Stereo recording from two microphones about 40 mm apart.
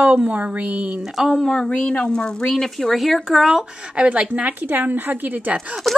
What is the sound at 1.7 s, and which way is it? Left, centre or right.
Speech, left.